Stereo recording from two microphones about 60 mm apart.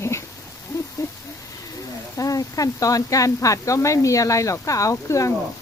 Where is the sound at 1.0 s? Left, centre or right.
Left.